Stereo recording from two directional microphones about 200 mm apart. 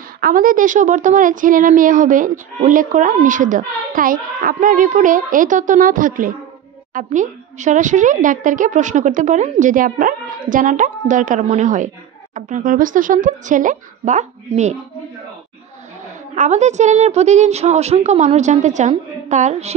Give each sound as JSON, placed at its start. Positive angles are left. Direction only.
{"t": 0.2, "sound": "speech", "side_deg": -45}
{"t": 16.3, "sound": "speech", "side_deg": -35}